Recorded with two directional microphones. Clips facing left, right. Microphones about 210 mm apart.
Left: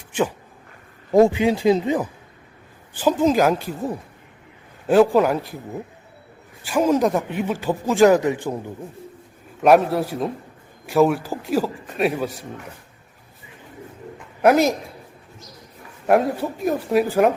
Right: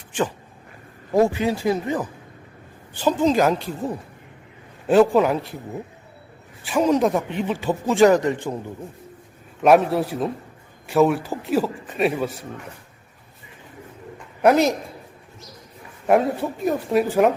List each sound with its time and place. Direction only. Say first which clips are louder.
1.1 s speech: left 4 dB; 15° left (ahead or behind)
3.0 s speech: left 1 dB; 5° left (ahead or behind)
6.7 s speech: even; centre (ahead or behind)
9.6 s speech: even; centre (ahead or behind)
14.4 s speech: left 1 dB; centre (ahead or behind)
16.0 s speech: even; centre (ahead or behind)